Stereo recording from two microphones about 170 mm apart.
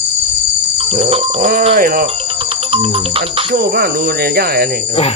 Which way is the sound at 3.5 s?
65° right (ahead or behind).